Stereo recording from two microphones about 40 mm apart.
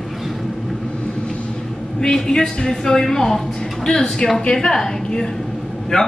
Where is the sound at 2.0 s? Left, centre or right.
Centre.